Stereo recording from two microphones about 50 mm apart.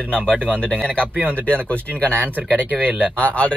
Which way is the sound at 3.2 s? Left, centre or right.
Left.